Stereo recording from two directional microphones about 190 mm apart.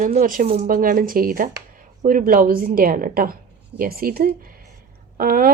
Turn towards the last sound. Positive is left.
turn(degrees=-50)  # may be behind; listen again after turning